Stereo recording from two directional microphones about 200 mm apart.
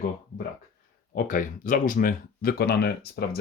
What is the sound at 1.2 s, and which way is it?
Speech, 40° left (ahead or behind).